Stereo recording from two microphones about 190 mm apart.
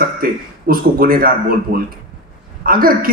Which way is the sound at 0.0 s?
50° right (ahead or behind).